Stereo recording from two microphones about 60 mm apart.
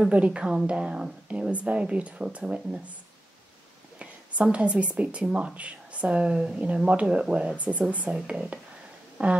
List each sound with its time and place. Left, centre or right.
0.0 s speech: right
4.0 s speech: right